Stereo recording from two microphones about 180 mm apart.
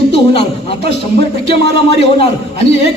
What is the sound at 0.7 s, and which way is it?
Speech, 35° left (ahead or behind).